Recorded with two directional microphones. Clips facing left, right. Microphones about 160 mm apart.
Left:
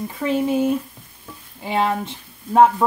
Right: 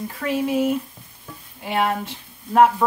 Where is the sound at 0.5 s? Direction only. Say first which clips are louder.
Even; 30° left (ahead or behind).